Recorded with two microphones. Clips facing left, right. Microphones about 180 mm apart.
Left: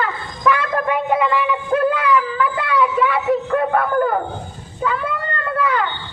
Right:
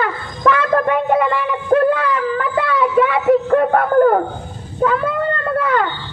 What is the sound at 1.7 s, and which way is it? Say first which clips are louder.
Music: right 5 dB; 40° right (ahead or behind).